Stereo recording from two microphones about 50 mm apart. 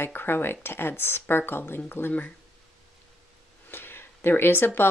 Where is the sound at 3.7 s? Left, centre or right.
Left.